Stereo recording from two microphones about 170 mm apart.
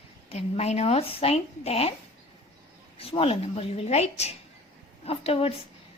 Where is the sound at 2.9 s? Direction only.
35° left (ahead or behind).